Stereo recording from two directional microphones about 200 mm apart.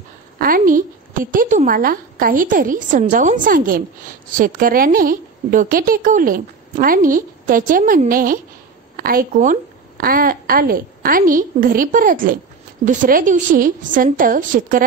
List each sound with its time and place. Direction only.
0.4 s a woman's voice: 45° right (ahead or behind)